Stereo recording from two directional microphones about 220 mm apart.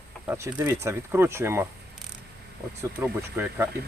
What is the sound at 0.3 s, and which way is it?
Speech, 10° right (ahead or behind).